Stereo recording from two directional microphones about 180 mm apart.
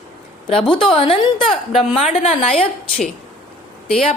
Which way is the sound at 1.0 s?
30° left (ahead or behind).